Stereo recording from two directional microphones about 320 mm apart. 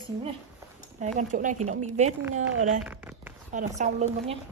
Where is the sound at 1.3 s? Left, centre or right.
Right.